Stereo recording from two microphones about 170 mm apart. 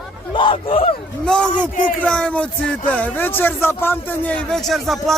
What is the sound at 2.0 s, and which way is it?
A man's voice, 5° left (ahead or behind).